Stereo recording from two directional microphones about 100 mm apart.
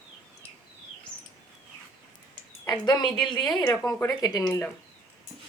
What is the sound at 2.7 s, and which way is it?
Speech, 45° left (ahead or behind).